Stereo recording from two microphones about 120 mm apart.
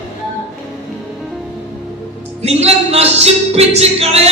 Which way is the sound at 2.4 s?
60° right (ahead or behind).